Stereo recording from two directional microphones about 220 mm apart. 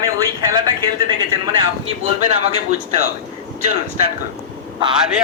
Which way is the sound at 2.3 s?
30° right (ahead or behind).